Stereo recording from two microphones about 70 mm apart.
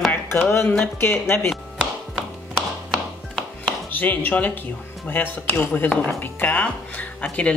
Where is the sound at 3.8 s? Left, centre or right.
Left.